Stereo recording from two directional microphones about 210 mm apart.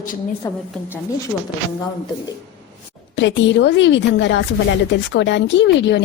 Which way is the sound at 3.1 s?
60° left (ahead or behind).